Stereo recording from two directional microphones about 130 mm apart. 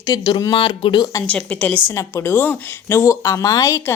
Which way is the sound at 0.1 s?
30° left (ahead or behind).